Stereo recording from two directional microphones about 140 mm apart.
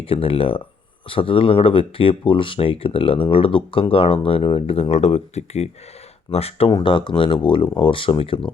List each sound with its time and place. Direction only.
0.0 s speech: 40° left (ahead or behind)
6.7 s speech: 35° left (ahead or behind)